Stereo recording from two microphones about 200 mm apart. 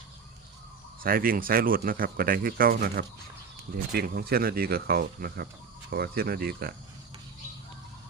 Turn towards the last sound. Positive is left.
turn(degrees=-50)  # may be behind; listen again after turning